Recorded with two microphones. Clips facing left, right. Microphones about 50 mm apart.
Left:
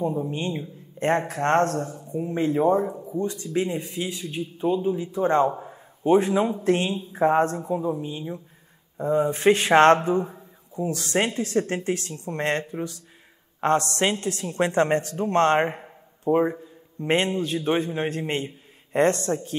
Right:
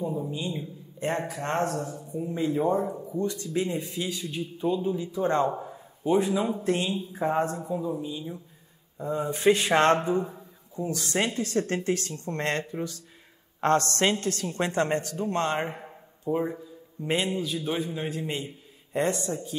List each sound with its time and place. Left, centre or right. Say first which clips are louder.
0.3 s speech: left 4 dB; left
2.0 s a man's voice: left 4 dB; left
2.6 s a man's voice: left 4 dB; left
6.0 s a man's voice: left 5 dB; left
7.6 s a man's voice: left 4 dB; left
11.5 s a man's voice: left 1 dB; left
14.7 s a man's voice: left 5 dB; left
15.3 s speech: left 9 dB; left
16.3 s a man's voice: left 7 dB; left